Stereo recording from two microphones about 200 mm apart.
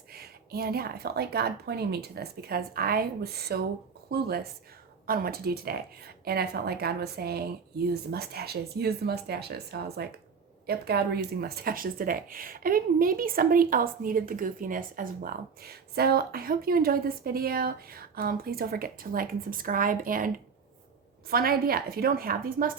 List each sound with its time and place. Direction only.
0.1 s speech: 50° right (ahead or behind)